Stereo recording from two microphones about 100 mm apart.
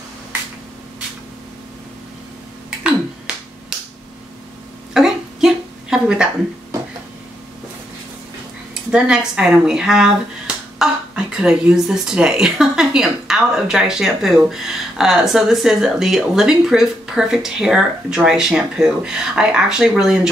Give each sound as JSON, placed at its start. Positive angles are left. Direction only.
{"t": 3.3, "sound": "finger snapping", "side_deg": -5}
{"t": 4.9, "sound": "a sound", "side_deg": -5}
{"t": 8.9, "sound": "speech", "side_deg": -10}